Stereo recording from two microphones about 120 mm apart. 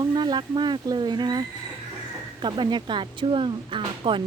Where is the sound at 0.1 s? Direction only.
40° right (ahead or behind).